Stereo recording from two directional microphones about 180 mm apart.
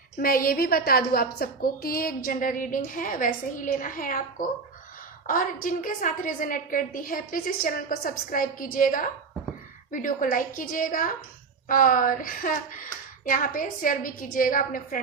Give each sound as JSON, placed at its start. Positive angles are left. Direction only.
{"t": 0.2, "sound": "a woman's voice", "side_deg": 55}